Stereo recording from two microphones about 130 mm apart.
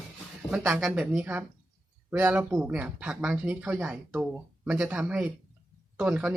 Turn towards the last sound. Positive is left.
turn(degrees=-10)  # may be behind; listen again after turning